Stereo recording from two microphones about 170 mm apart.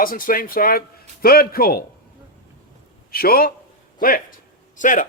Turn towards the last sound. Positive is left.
turn(degrees=50)  # may be behind; listen again after turning